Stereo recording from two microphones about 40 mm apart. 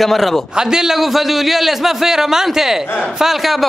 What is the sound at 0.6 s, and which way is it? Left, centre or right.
A man's voice, centre.